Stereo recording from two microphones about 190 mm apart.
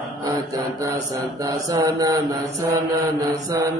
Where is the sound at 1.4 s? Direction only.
20° right (ahead or behind).